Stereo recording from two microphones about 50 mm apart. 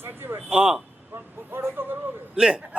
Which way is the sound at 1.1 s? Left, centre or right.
Right.